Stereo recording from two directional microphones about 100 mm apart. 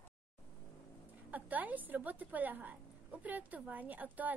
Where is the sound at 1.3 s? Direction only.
15° right (ahead or behind).